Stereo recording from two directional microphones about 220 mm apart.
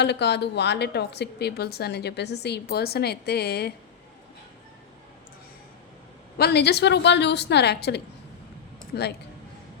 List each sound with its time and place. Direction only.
0.0 s a woman's voice: 50° left (ahead or behind)
6.3 s a woman's voice: 45° left (ahead or behind)